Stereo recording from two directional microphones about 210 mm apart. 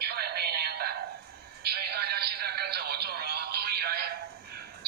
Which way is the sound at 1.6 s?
50° right (ahead or behind).